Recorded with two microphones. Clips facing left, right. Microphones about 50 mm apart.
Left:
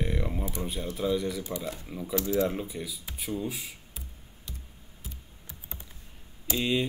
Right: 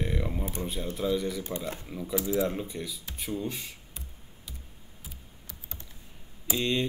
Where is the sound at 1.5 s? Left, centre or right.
Right.